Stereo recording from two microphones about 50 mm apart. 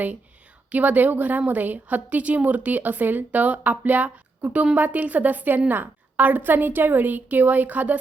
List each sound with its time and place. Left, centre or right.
0.7 s a woman's voice: right